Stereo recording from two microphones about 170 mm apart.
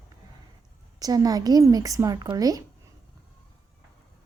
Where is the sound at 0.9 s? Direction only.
20° right (ahead or behind).